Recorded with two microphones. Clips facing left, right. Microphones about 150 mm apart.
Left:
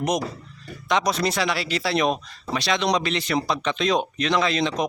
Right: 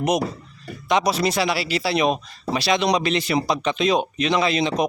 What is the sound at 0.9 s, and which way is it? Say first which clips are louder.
Speech: right 2 dB; 10° right (ahead or behind).